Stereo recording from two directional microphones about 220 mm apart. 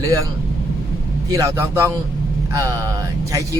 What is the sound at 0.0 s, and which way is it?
Speech, 15° right (ahead or behind).